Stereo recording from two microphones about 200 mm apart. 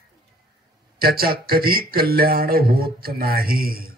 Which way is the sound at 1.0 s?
50° right (ahead or behind).